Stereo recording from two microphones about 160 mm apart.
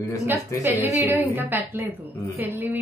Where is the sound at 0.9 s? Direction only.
10° right (ahead or behind).